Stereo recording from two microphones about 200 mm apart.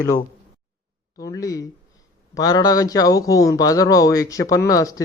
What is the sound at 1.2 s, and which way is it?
Speech, 15° left (ahead or behind).